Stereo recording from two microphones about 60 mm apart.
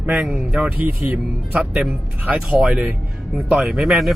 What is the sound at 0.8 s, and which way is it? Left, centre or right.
Speech, right.